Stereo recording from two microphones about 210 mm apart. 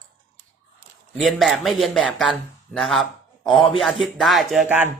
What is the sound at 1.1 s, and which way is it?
Speech, centre (ahead or behind).